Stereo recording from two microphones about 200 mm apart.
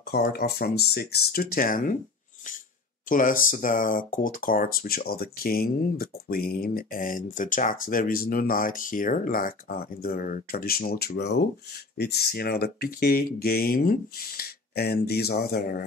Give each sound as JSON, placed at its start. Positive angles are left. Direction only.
{"t": 0.1, "sound": "speech", "side_deg": 50}
{"t": 3.1, "sound": "speech", "side_deg": 45}